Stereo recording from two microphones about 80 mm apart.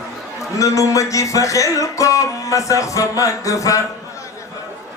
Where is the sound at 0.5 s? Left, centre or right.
Left.